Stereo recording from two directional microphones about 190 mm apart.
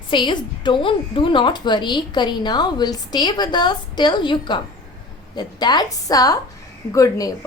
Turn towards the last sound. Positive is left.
turn(degrees=20)  # may be behind; listen again after turning